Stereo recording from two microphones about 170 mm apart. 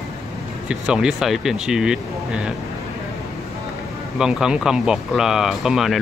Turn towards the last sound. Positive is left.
turn(degrees=0)  # may be behind; listen again after turning